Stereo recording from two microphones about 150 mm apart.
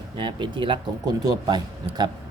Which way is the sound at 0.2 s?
30° right (ahead or behind).